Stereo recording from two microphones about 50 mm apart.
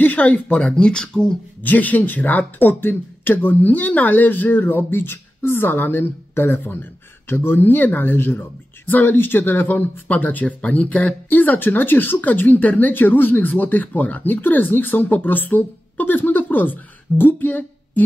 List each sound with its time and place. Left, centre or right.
0.0 s speech: left; by 1.4 s centre
1.6 s a woman's voice: left